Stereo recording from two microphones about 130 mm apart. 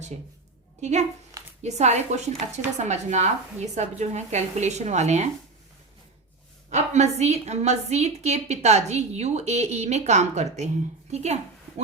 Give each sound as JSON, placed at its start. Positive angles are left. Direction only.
{"t": 0.8, "sound": "a woman's voice", "side_deg": -60}
{"t": 6.7, "sound": "a woman's voice", "side_deg": -60}